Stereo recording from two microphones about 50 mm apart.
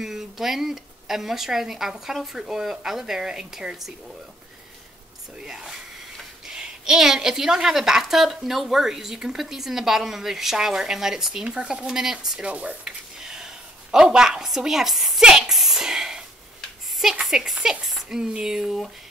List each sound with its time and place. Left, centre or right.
0.0 s a woman's voice: centre
5.4 s a woman's voice: centre
12.4 s speech: right
13.2 s a woman's voice: centre
15.2 s a sound: centre
17.0 s a woman's voice: centre